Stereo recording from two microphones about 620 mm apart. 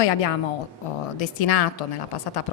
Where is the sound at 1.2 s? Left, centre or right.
Left.